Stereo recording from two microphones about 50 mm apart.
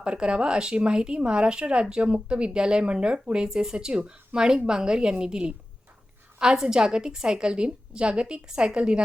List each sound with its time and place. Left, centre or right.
0.0 s speech: right